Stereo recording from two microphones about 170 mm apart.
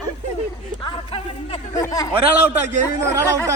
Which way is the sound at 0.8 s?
30° left (ahead or behind).